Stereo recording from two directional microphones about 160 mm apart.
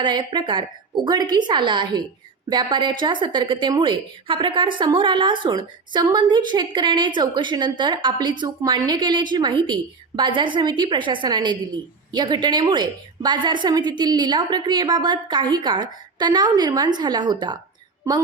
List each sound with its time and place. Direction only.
0.0 s a woman's voice: 30° right (ahead or behind)